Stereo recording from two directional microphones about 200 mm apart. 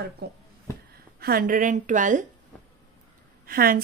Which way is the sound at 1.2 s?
45° right (ahead or behind).